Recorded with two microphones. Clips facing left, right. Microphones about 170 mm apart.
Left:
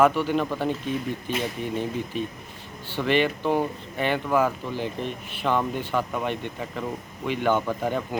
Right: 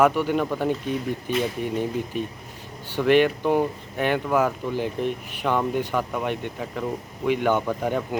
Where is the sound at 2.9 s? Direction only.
10° right (ahead or behind).